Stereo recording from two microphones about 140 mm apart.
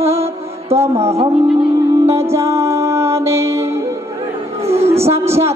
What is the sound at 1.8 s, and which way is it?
Music, 25° right (ahead or behind).